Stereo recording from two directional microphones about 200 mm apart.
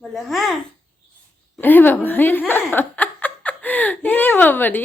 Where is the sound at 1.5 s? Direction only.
10° left (ahead or behind).